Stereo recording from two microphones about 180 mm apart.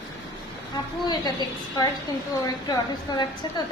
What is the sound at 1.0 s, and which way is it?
Speech, 25° left (ahead or behind).